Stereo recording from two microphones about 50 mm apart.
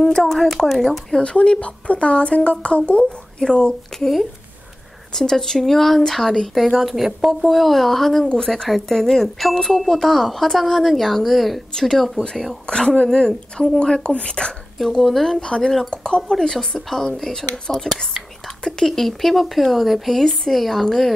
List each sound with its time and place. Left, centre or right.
0.1 s speech: centre
1.2 s a woman's voice: left
5.1 s speech: centre
12.6 s a woman's voice: centre
14.8 s speech: centre
16.2 s speech: centre